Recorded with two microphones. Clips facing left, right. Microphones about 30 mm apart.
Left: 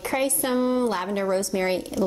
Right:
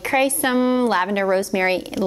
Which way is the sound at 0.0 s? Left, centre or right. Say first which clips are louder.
Right 6 dB; right.